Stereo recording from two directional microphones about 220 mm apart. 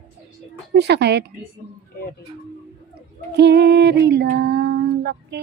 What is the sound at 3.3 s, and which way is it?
Female singing, 50° right (ahead or behind).